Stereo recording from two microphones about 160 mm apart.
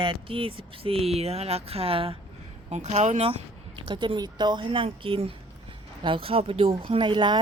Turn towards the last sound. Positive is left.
turn(degrees=-30)  # may be behind; listen again after turning